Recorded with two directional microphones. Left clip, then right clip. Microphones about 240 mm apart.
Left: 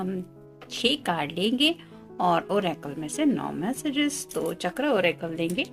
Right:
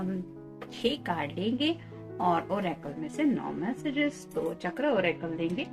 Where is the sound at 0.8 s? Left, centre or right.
Left.